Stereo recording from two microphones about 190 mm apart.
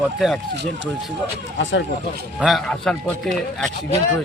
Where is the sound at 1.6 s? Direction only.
70° left (ahead or behind).